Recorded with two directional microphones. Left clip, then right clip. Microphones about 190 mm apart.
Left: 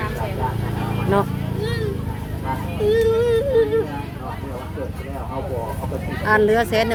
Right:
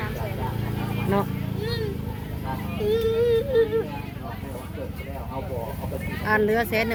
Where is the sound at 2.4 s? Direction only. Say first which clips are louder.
Left 6 dB; 50° left (ahead or behind).